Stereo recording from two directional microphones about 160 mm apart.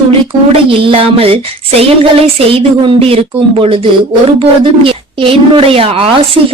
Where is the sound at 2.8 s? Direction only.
35° right (ahead or behind).